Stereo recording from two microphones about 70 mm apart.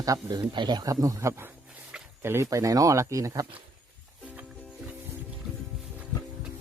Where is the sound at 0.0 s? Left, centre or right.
Right.